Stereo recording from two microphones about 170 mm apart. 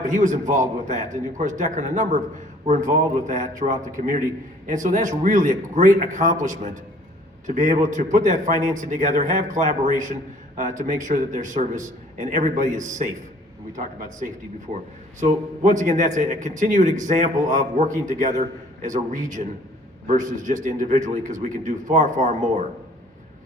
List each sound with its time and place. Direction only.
0.0 s a man's voice: 50° right (ahead or behind)
15.2 s a man's voice: 45° right (ahead or behind)